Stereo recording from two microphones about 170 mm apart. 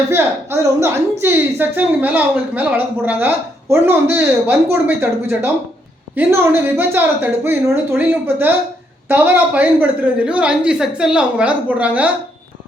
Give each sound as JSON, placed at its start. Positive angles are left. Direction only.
{"t": 0.1, "sound": "a woman's voice", "side_deg": -15}
{"t": 6.1, "sound": "a woman's voice", "side_deg": -15}